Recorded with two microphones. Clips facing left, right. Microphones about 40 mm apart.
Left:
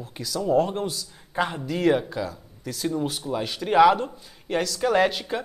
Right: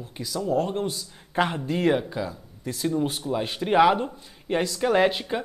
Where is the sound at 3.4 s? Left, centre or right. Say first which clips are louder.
Left 2 dB; right.